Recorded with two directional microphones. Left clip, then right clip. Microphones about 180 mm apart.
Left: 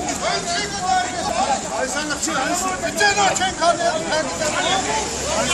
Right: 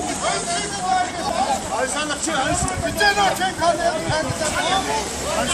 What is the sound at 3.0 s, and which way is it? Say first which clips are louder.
Speech: even; 10° left (ahead or behind).